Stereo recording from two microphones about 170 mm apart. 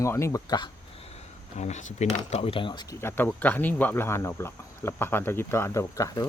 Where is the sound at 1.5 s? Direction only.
40° left (ahead or behind).